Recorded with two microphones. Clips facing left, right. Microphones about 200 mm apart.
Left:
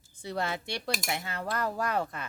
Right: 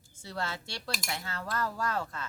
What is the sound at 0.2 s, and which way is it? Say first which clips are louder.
Speech: left 4 dB; 15° left (ahead or behind).